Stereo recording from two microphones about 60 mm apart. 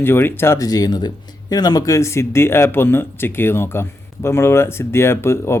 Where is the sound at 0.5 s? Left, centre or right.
Left.